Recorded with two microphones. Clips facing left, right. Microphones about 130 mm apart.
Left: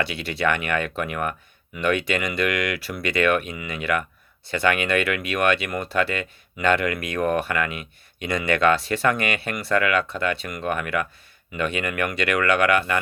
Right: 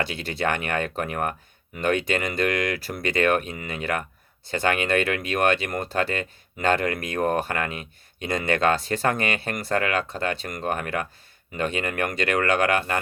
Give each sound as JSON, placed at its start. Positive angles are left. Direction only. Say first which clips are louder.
{"t": 0.4, "sound": "speech", "louder": "left 2 dB", "side_deg": -45}